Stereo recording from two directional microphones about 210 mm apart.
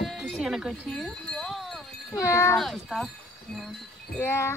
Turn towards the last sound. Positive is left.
turn(degrees=10)  # may be behind; listen again after turning